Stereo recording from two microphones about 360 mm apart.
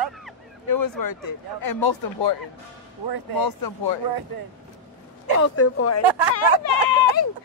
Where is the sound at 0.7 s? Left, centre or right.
Left.